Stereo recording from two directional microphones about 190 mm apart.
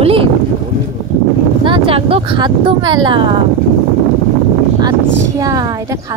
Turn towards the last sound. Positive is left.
turn(degrees=-20)  # may be behind; listen again after turning